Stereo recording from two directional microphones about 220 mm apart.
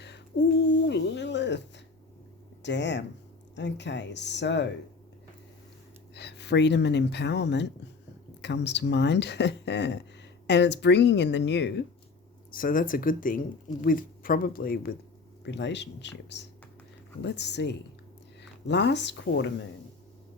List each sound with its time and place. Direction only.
0.9 s a sound: 50° left (ahead or behind)
2.6 s speech: 50° left (ahead or behind)
6.1 s speech: 50° left (ahead or behind)
12.5 s speech: 40° left (ahead or behind)
15.4 s speech: 55° left (ahead or behind)